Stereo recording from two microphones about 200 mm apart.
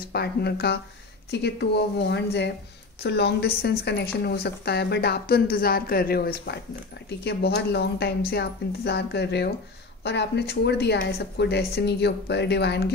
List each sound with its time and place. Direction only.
0.1 s a woman's voice: 55° left (ahead or behind)